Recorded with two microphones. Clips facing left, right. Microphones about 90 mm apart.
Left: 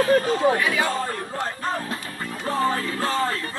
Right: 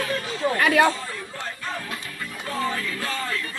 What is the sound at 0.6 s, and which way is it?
Speech, 65° right (ahead or behind).